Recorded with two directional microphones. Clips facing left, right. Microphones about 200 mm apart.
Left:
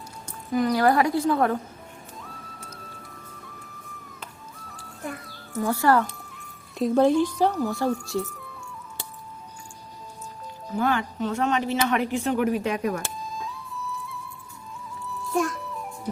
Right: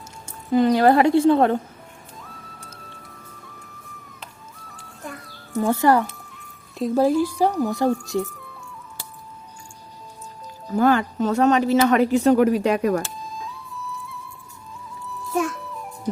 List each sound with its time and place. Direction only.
0.3 s speech: 25° right (ahead or behind)
4.7 s music: centre (ahead or behind)
5.6 s speech: 20° right (ahead or behind)
6.7 s speech: centre (ahead or behind); by 8.3 s 20° right (ahead or behind)
10.8 s speech: 40° right (ahead or behind)
12.6 s speech: 70° right (ahead or behind)
13.1 s music: centre (ahead or behind)